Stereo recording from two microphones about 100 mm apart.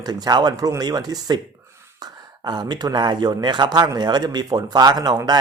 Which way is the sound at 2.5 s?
45° right (ahead or behind).